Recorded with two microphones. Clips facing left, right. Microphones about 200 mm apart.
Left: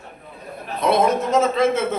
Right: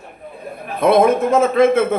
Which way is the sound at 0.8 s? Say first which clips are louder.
Right 5 dB; 55° right (ahead or behind).